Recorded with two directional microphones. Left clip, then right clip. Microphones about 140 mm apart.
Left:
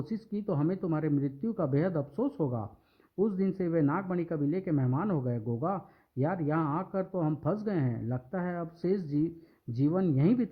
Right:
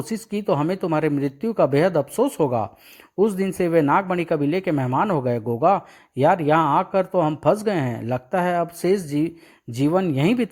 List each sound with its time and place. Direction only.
0.1 s speech: 25° right (ahead or behind)